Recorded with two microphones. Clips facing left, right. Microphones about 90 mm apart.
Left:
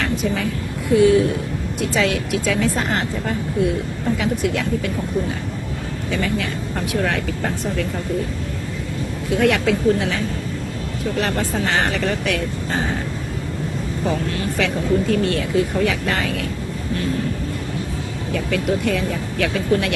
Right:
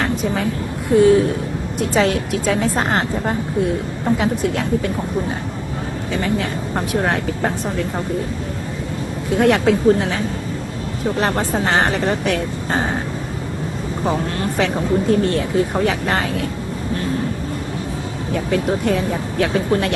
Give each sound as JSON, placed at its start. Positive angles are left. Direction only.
{"t": 0.9, "sound": "speech", "side_deg": -35}
{"t": 6.1, "sound": "speech", "side_deg": -30}
{"t": 9.4, "sound": "speech", "side_deg": -35}
{"t": 14.0, "sound": "speech", "side_deg": -35}
{"t": 18.3, "sound": "speech", "side_deg": -30}